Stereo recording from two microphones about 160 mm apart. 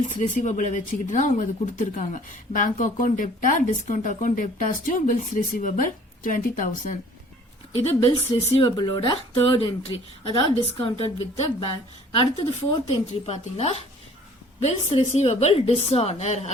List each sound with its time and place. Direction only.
0.2 s speech: 50° left (ahead or behind)
8.0 s speech: 30° left (ahead or behind)
12.7 s speech: 35° left (ahead or behind)